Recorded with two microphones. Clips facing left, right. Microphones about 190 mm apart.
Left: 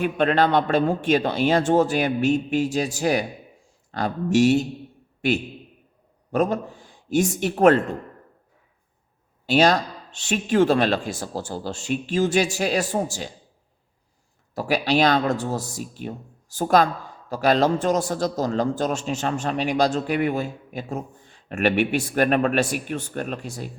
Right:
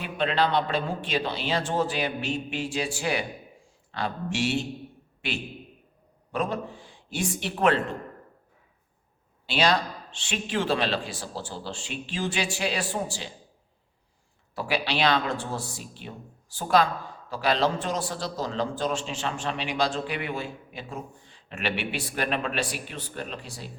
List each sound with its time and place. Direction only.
0.0 s speech: 50° left (ahead or behind)
6.3 s speech: 45° left (ahead or behind)
9.5 s speech: 45° left (ahead or behind)
14.5 s speech: 45° left (ahead or behind)